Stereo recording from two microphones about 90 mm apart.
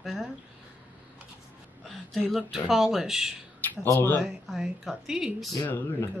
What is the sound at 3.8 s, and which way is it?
Speech, 25° left (ahead or behind).